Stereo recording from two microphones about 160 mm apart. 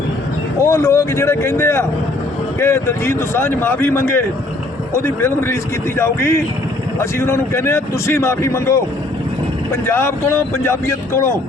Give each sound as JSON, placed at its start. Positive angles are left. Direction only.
{"t": 0.6, "sound": "a man's voice", "side_deg": 15}
{"t": 9.8, "sound": "a man's voice", "side_deg": 15}